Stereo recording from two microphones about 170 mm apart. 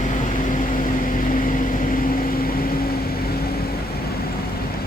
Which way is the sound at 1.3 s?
55° left (ahead or behind).